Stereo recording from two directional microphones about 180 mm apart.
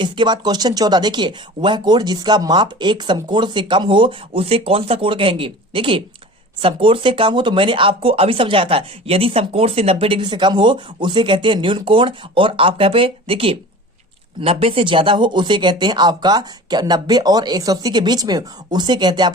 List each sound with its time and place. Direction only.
0.0 s speech: 25° right (ahead or behind)